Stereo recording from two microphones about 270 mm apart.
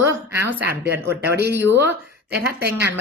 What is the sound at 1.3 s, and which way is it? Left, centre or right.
Speech, right.